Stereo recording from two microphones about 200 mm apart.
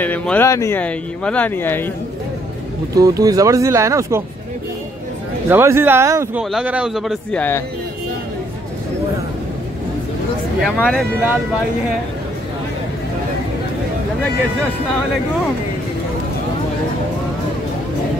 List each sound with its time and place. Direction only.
0.0 s speech: 10° left (ahead or behind)
3.0 s speech: 15° right (ahead or behind)
5.5 s a man's voice: 10° right (ahead or behind)
10.6 s a man's voice: 5° left (ahead or behind)